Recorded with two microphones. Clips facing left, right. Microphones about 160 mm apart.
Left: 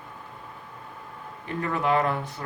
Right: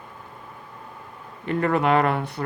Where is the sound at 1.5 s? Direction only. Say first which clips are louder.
Right 5 dB; 65° right (ahead or behind).